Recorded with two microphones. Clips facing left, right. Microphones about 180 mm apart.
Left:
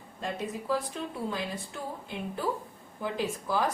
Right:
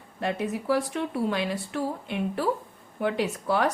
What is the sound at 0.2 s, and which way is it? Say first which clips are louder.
A woman's voice: right 6 dB; 70° right (ahead or behind).